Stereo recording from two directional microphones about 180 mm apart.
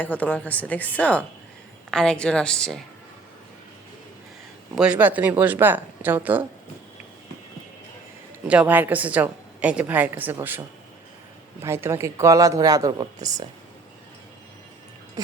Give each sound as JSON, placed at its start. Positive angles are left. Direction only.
{"t": 0.0, "sound": "a woman's voice", "side_deg": 10}
{"t": 4.7, "sound": "a woman's voice", "side_deg": -5}
{"t": 8.4, "sound": "a woman's voice", "side_deg": -10}
{"t": 11.6, "sound": "speech", "side_deg": -15}